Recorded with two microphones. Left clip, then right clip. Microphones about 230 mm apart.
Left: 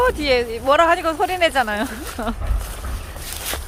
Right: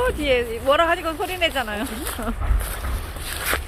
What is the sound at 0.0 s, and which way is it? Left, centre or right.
Speech, left.